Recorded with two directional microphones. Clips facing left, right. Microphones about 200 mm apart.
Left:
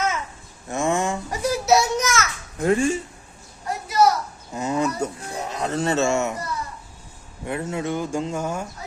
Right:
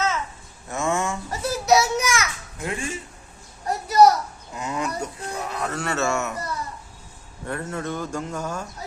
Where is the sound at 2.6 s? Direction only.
45° left (ahead or behind).